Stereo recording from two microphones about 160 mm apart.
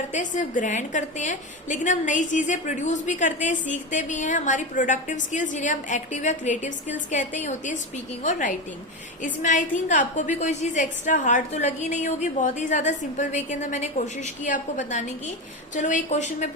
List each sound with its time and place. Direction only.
0.1 s a woman's voice: 50° left (ahead or behind)